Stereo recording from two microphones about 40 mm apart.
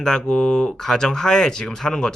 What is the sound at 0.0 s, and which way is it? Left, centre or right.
Speech, centre.